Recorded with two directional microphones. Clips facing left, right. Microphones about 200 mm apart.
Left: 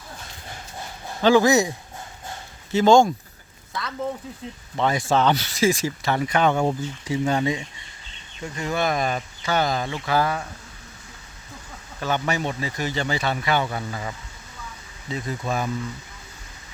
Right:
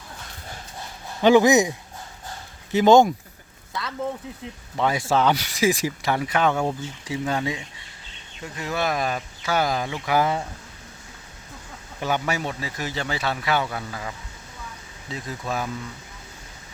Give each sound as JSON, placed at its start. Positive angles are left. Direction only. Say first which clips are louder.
{"t": 1.2, "sound": "speech", "louder": "right 1 dB", "side_deg": -15}
{"t": 2.7, "sound": "speech", "louder": "right 1 dB", "side_deg": -15}
{"t": 4.8, "sound": "speech", "louder": "left 1 dB", "side_deg": -10}
{"t": 11.9, "sound": "speech", "louder": "left 1 dB", "side_deg": -10}